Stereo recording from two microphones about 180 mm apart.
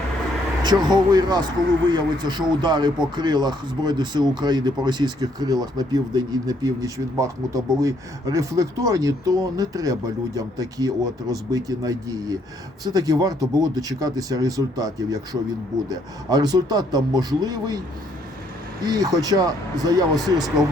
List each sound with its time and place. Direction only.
0.6 s speech: 25° right (ahead or behind)
18.9 s speech: 20° right (ahead or behind)